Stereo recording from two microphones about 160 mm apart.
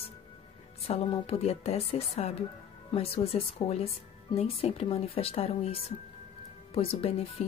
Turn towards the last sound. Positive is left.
turn(degrees=40)  # may be behind; listen again after turning